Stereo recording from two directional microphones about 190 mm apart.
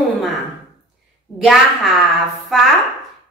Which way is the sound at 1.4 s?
Centre (ahead or behind).